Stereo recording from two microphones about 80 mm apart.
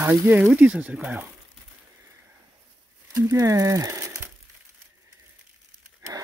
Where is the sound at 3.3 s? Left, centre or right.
Right.